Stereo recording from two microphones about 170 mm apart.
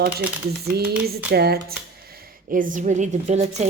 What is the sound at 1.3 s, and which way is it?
Speech, 70° right (ahead or behind).